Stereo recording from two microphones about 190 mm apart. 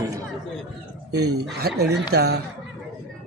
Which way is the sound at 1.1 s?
60° right (ahead or behind).